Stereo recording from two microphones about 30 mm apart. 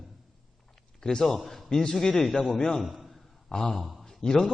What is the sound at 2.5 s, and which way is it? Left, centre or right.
A man's voice, left.